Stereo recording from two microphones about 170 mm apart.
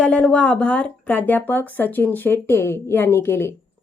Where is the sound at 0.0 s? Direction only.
5° left (ahead or behind).